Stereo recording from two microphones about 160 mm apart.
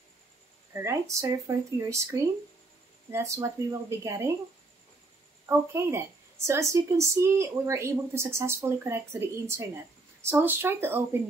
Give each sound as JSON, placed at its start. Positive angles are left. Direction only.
{"t": 0.7, "sound": "speech", "side_deg": -20}
{"t": 5.5, "sound": "speech", "side_deg": -15}